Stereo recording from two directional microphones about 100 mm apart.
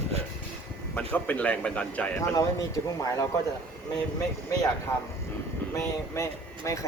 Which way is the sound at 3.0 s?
35° left (ahead or behind).